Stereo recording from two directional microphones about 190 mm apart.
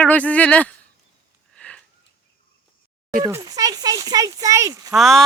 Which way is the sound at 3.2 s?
20° right (ahead or behind).